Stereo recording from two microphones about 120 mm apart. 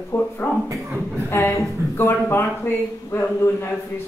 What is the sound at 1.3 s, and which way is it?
Speech, 20° left (ahead or behind).